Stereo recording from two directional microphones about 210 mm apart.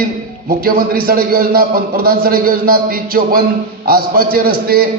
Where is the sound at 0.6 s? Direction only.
45° right (ahead or behind).